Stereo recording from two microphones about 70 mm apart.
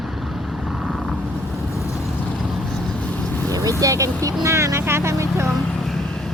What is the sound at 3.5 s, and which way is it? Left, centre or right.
Vehicle, right.